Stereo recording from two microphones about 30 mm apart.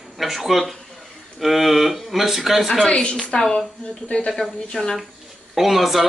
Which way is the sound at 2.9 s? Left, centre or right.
Left.